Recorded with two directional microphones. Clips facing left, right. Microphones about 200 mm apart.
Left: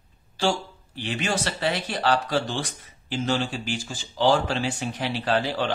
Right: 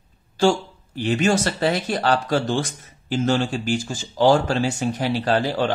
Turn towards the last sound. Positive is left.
turn(degrees=-45)  # may be behind; listen again after turning